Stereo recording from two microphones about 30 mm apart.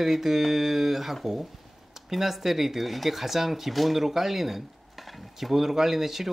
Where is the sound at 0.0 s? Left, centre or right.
Centre.